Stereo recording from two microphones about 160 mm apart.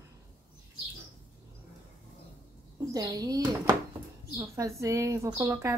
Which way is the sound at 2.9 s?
20° right (ahead or behind).